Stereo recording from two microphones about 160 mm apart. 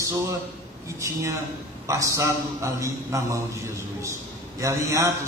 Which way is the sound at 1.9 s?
20° right (ahead or behind).